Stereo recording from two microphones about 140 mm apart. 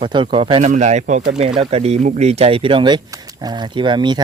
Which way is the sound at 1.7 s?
50° right (ahead or behind).